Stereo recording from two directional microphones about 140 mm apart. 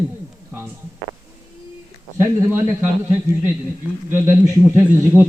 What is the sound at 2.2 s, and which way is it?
A man's voice, 15° right (ahead or behind).